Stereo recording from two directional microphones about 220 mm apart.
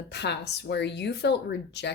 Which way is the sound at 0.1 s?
50° left (ahead or behind).